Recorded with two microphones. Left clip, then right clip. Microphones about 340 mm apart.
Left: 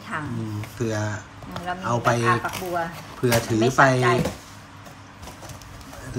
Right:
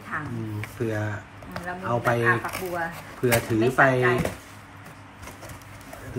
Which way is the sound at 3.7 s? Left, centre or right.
Centre.